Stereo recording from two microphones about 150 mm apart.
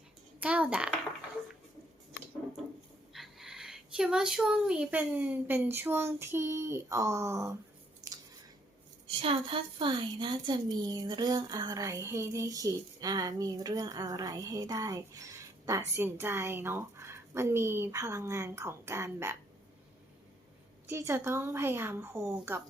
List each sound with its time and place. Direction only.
0.3 s a child's voice: 10° right (ahead or behind)
3.1 s speech: centre (ahead or behind); by 7.5 s 20° right (ahead or behind)
9.0 s a woman's voice: 40° right (ahead or behind); by 19.4 s 15° right (ahead or behind)
20.9 s a woman's voice: 15° right (ahead or behind)